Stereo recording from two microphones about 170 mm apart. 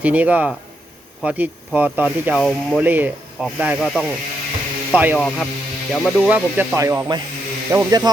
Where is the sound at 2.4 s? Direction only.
5° left (ahead or behind).